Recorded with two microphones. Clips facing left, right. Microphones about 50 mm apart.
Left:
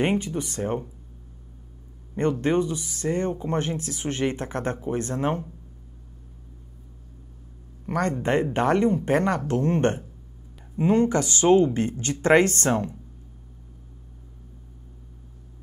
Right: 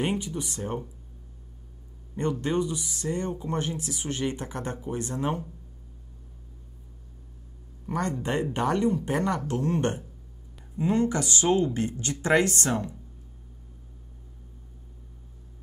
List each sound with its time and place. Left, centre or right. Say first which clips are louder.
0.0 s speech: left 5 dB; left
2.1 s speech: left 4 dB; left
7.8 s speech: left 4 dB; left